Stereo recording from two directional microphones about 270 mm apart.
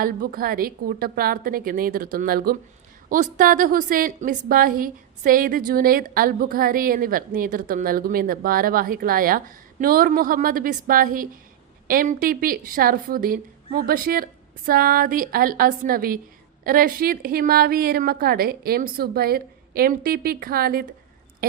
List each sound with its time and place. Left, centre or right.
0.0 s a woman's voice: right